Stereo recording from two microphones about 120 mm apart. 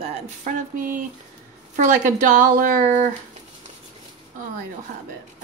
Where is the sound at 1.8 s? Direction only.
90° right.